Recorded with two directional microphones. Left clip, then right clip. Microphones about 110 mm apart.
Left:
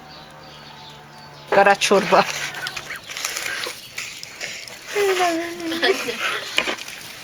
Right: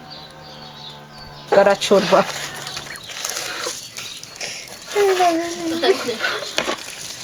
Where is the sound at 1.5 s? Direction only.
35° left (ahead or behind).